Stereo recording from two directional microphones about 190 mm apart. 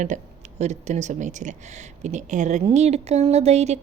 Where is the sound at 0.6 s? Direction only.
35° right (ahead or behind).